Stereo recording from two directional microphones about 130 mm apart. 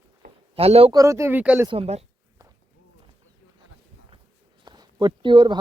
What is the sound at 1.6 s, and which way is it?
Speech, 45° right (ahead or behind).